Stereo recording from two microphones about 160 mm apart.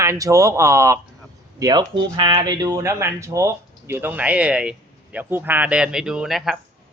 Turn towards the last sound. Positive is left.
turn(degrees=0)  # may be behind; listen again after turning